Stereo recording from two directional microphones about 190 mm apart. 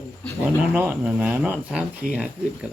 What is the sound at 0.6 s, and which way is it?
Speech, 10° right (ahead or behind).